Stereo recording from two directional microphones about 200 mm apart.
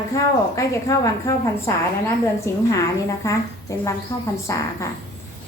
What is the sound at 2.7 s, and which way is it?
A woman's voice, 15° left (ahead or behind).